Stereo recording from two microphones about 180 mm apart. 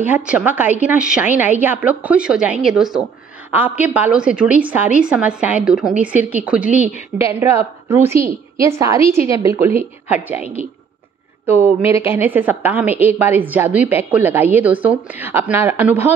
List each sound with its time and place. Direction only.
0.0 s a woman's voice: 10° right (ahead or behind)
6.7 s a woman's voice: 40° left (ahead or behind)
7.2 s a woman's voice: 15° right (ahead or behind)